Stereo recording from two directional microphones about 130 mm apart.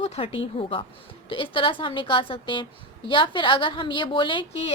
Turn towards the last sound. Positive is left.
turn(degrees=45)  # may be behind; listen again after turning